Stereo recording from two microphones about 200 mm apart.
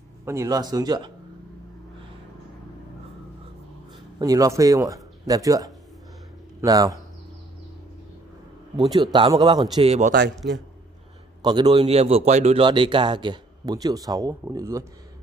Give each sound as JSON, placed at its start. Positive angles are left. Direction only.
{"t": 0.2, "sound": "speech", "side_deg": -15}
{"t": 4.2, "sound": "speech", "side_deg": -15}
{"t": 8.7, "sound": "speech", "side_deg": -20}
{"t": 11.4, "sound": "speech", "side_deg": -20}
{"t": 11.8, "sound": "speech", "side_deg": -30}